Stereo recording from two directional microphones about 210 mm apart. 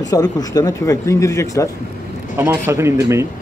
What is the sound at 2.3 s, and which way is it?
Speech, 10° right (ahead or behind).